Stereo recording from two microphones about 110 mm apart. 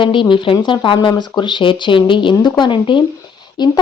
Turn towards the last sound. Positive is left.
turn(degrees=40)  # may be behind; listen again after turning